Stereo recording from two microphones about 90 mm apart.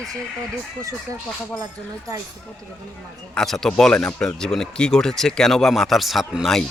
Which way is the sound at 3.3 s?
5° left (ahead or behind).